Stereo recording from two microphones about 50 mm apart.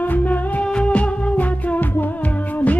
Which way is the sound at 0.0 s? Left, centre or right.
Left.